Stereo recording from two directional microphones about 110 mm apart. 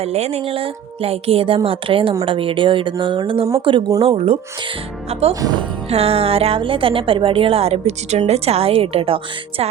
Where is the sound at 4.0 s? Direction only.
60° right (ahead or behind).